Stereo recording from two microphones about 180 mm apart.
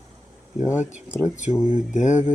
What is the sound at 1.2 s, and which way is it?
Speech, 40° left (ahead or behind).